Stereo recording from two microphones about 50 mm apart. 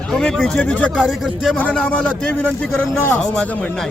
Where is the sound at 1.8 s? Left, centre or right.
Left.